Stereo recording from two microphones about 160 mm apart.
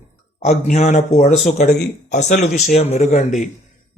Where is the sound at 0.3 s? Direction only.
45° left (ahead or behind).